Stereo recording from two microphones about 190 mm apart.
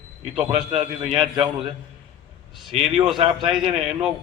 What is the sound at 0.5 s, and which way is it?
A man's voice, 30° right (ahead or behind).